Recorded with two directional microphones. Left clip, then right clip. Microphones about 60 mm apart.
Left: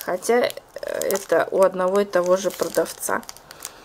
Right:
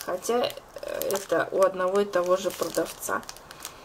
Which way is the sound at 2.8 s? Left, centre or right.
Left.